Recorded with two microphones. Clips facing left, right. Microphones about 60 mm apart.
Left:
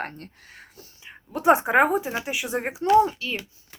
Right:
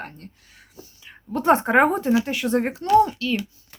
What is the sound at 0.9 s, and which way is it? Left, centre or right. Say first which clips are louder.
Speech: right 5 dB; centre.